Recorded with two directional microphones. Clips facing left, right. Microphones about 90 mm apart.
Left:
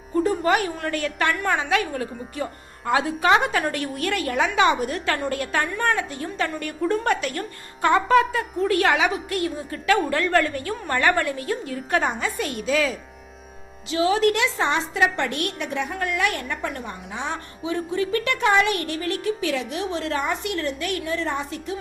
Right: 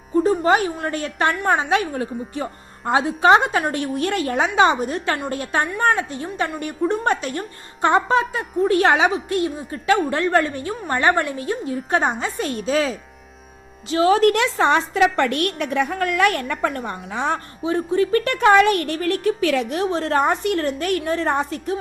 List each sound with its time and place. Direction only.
0.2 s a woman's voice: 25° right (ahead or behind)
13.9 s a woman's voice: 45° right (ahead or behind)